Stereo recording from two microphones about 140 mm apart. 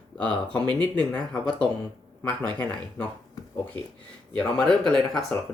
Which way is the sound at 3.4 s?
25° left (ahead or behind).